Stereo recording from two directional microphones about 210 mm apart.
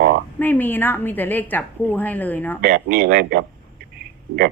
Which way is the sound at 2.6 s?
45° right (ahead or behind).